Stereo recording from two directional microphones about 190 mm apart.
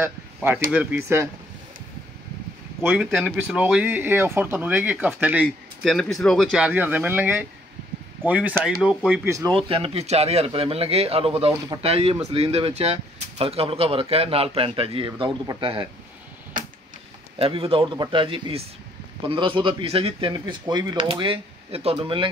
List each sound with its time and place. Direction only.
0.0 s speech: 10° right (ahead or behind)
2.8 s speech: 10° right (ahead or behind)
9.3 s speech: 15° right (ahead or behind)
9.6 s speech: 30° right (ahead or behind)
17.4 s speech: 30° right (ahead or behind)